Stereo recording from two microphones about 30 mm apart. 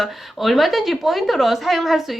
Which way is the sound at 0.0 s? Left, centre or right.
Centre.